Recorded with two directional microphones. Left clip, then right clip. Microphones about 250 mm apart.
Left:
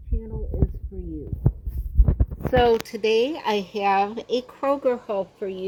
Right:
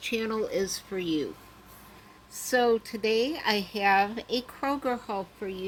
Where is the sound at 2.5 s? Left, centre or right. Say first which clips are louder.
Left 5 dB; centre.